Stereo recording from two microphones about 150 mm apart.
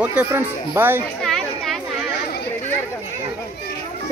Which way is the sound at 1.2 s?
Centre (ahead or behind).